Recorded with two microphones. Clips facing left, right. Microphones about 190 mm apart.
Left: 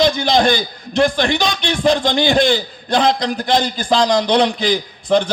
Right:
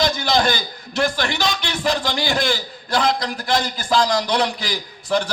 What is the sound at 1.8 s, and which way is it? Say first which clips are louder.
A man's voice: left 7 dB; 25° left (ahead or behind).